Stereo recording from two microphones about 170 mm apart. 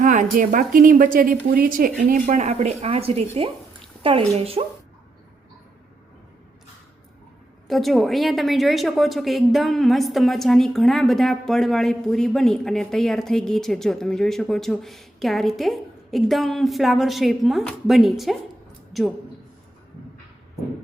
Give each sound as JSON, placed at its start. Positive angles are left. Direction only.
{"t": 0.0, "sound": "a woman's voice", "side_deg": -50}
{"t": 4.4, "sound": "a woman's voice", "side_deg": -35}
{"t": 7.7, "sound": "a woman's voice", "side_deg": 0}